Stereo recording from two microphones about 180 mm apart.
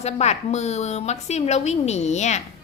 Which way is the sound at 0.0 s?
40° left (ahead or behind).